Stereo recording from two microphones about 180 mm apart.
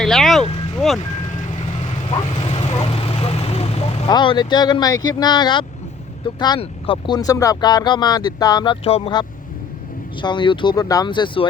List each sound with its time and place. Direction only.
0.0 s speech: centre (ahead or behind)
2.5 s vehicle: 35° left (ahead or behind)
4.1 s speech: 25° left (ahead or behind)